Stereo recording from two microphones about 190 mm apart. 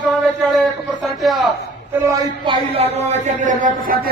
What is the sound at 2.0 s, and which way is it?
Speech, 20° right (ahead or behind).